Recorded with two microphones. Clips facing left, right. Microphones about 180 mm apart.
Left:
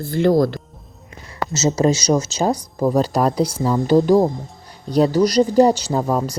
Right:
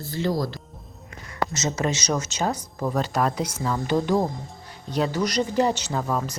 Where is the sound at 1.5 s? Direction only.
30° left (ahead or behind).